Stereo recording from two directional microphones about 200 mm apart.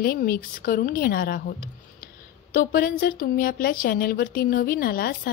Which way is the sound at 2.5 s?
50° left (ahead or behind).